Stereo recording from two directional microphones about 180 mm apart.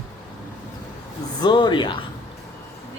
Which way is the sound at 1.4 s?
25° left (ahead or behind).